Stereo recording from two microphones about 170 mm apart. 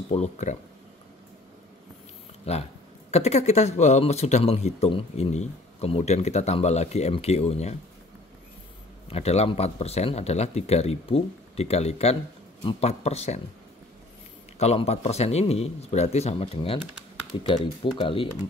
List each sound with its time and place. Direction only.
0.1 s speech: 40° left (ahead or behind)
2.5 s speech: 40° left (ahead or behind)
9.1 s speech: 40° left (ahead or behind)
14.6 s speech: 40° left (ahead or behind)
17.9 s speech: 30° left (ahead or behind)